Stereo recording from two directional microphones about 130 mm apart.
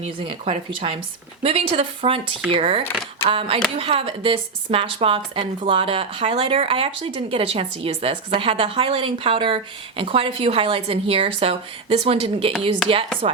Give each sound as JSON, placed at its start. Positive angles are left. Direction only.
{"t": 0.0, "sound": "speech", "side_deg": -45}